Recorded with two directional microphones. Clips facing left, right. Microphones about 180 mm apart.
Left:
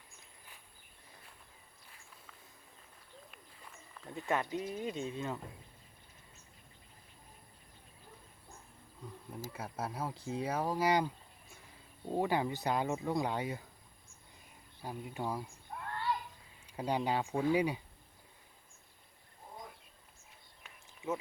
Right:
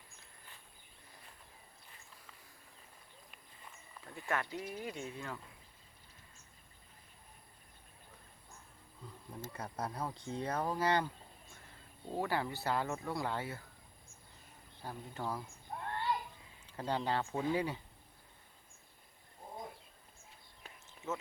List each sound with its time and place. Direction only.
4.1 s speech: 20° left (ahead or behind)
9.3 s speech: 5° left (ahead or behind)
14.8 s speech: 10° left (ahead or behind)
15.7 s a sound: 30° right (ahead or behind)
16.6 s speech: 15° left (ahead or behind)
21.0 s a sound: 10° left (ahead or behind)